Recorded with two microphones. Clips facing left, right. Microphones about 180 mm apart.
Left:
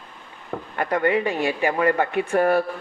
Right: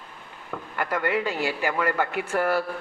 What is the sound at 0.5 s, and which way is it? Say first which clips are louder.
A man's voice: left 4 dB; 30° left (ahead or behind).